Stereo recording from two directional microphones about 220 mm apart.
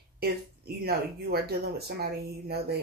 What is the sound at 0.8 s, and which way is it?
Speech, 45° right (ahead or behind).